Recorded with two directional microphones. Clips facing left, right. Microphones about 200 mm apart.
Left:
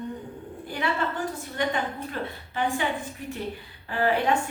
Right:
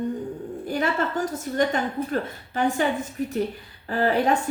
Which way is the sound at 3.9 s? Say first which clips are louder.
Right 3 dB; 40° right (ahead or behind).